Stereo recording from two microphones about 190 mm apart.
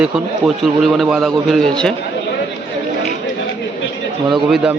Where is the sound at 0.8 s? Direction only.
Centre (ahead or behind).